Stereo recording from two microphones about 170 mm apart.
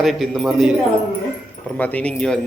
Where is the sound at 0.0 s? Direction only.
Centre (ahead or behind).